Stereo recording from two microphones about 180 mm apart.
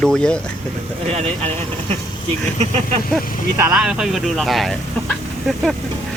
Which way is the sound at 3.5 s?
10° right (ahead or behind).